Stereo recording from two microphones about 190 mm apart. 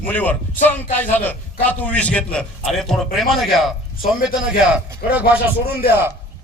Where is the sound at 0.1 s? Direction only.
10° left (ahead or behind).